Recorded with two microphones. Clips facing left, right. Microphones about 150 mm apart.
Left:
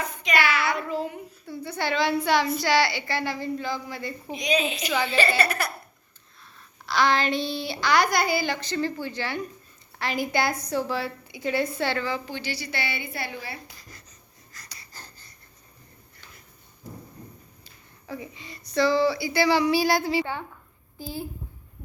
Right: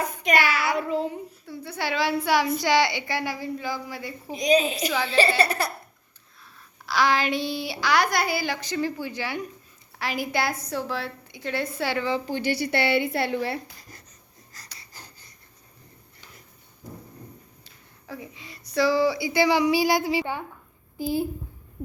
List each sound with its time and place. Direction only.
0.0 s child singing: 50° right (ahead or behind)
0.6 s child singing: 10° right (ahead or behind)
1.5 s a woman's voice: 5° right (ahead or behind)
2.6 s a woman's voice: 15° right (ahead or behind)
4.3 s a woman's voice: 40° right (ahead or behind)
4.9 s a woman's voice: centre (ahead or behind)
5.4 s a woman's voice: 30° right (ahead or behind)
6.4 s a woman's voice: 5° right (ahead or behind)
12.2 s a woman's voice: 50° right (ahead or behind); by 13.6 s 65° right (ahead or behind)
14.5 s a sound: 35° right (ahead or behind)
14.9 s a sound: 15° right (ahead or behind)
18.1 s a woman's voice: centre (ahead or behind)